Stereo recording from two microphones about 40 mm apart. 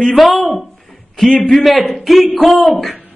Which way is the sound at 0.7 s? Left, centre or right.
Centre.